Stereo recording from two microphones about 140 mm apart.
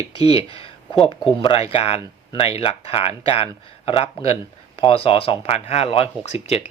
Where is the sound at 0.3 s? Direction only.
40° left (ahead or behind).